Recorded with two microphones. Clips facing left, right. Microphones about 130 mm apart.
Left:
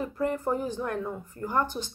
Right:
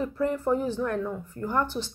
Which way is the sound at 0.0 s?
5° left (ahead or behind).